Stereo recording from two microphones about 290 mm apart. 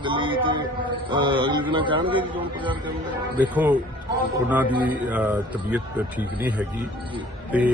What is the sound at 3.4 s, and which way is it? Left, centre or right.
Speech, centre.